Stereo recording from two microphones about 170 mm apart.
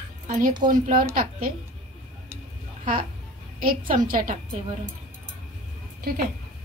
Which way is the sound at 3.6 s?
55° right (ahead or behind).